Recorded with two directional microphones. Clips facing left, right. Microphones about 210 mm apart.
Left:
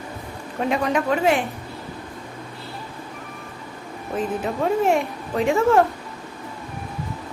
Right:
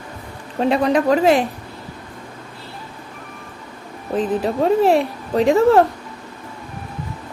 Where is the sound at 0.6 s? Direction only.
35° right (ahead or behind).